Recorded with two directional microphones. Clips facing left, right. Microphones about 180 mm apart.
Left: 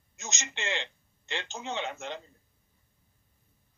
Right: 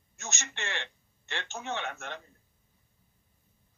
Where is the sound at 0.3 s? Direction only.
15° left (ahead or behind).